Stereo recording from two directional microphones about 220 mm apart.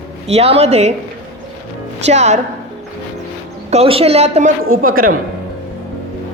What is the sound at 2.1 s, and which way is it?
Speech, 30° right (ahead or behind).